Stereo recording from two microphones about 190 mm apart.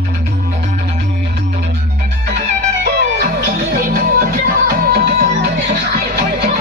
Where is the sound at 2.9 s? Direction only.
50° right (ahead or behind).